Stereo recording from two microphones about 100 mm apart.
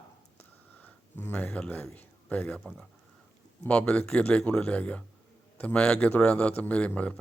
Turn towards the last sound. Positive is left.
turn(degrees=15)  # may be behind; listen again after turning